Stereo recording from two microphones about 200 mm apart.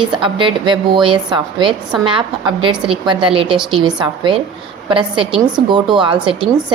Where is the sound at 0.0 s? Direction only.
25° right (ahead or behind).